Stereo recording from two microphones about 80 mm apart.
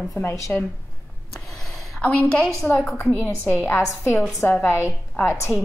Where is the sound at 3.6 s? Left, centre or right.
Left.